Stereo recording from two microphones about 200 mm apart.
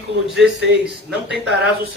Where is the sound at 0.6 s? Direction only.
55° right (ahead or behind).